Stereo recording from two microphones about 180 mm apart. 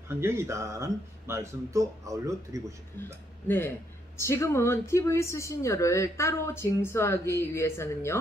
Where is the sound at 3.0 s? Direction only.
15° left (ahead or behind).